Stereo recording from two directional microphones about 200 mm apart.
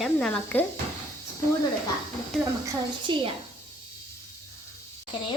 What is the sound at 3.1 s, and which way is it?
Speech, 25° right (ahead or behind).